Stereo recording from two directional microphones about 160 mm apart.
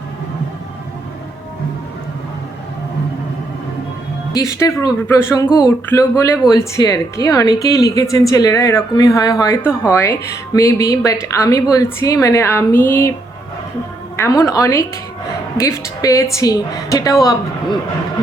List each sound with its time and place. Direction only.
4.3 s speech: 20° left (ahead or behind)
14.2 s speech: 20° left (ahead or behind)